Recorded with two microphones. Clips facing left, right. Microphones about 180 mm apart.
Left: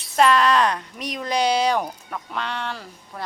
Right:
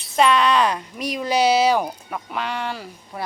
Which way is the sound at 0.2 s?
Centre (ahead or behind).